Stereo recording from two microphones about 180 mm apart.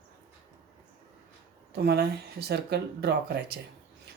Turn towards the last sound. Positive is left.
turn(degrees=-65)  # may be behind; listen again after turning